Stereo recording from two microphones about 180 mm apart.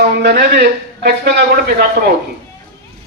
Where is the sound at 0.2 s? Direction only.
60° right (ahead or behind).